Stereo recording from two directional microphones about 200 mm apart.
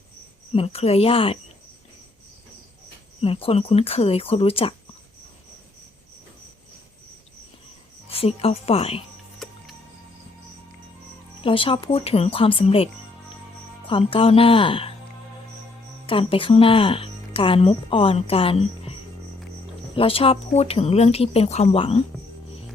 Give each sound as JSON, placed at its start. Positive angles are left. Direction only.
{"t": 0.5, "sound": "speech", "side_deg": 30}
{"t": 3.2, "sound": "speech", "side_deg": 30}
{"t": 8.1, "sound": "speech", "side_deg": 30}
{"t": 9.4, "sound": "music", "side_deg": 0}
{"t": 11.4, "sound": "speech", "side_deg": 25}
{"t": 16.0, "sound": "speech", "side_deg": 25}
{"t": 20.0, "sound": "speech", "side_deg": 30}